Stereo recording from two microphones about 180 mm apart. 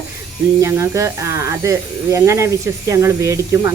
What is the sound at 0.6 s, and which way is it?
Speech, 15° right (ahead or behind).